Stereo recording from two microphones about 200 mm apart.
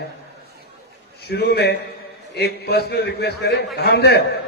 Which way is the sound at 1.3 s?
55° left (ahead or behind).